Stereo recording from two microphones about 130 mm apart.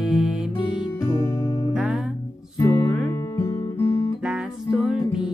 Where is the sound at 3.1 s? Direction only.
20° left (ahead or behind).